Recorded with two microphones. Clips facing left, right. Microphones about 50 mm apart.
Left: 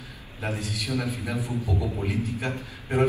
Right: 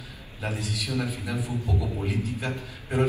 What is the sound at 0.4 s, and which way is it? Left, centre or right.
A man's voice, left.